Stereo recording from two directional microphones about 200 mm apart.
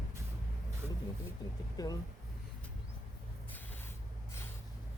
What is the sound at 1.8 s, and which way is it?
Speech, 20° left (ahead or behind).